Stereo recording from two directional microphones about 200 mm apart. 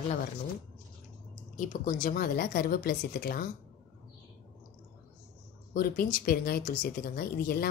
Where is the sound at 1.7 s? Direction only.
40° left (ahead or behind).